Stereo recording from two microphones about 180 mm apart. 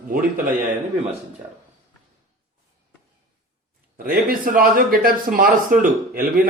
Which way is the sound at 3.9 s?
50° right (ahead or behind).